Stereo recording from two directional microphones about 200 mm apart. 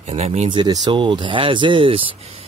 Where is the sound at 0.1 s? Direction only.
30° right (ahead or behind).